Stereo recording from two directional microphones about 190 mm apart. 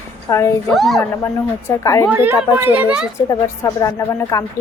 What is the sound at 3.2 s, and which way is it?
Speech, 15° left (ahead or behind).